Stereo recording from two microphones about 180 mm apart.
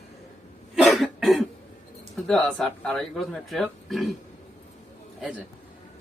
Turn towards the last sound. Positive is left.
turn(degrees=0)  # may be behind; listen again after turning